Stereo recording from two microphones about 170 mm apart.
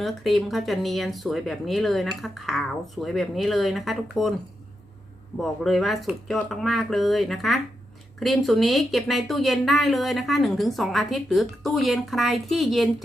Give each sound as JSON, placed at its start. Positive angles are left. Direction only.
{"t": 0.0, "sound": "speech", "side_deg": 0}
{"t": 5.4, "sound": "speech", "side_deg": 0}